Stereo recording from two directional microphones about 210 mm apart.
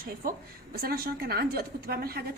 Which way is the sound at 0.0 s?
45° right (ahead or behind).